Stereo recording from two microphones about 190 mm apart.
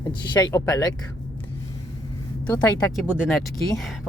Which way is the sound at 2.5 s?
Centre (ahead or behind).